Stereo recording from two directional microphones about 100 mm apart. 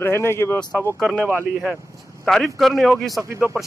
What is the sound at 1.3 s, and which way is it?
Speech, 20° right (ahead or behind).